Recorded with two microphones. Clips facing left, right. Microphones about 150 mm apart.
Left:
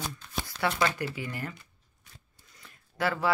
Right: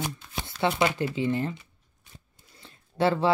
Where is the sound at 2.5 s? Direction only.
30° right (ahead or behind).